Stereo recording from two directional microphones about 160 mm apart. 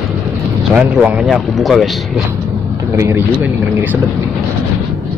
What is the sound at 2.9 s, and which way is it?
Speech, 15° right (ahead or behind).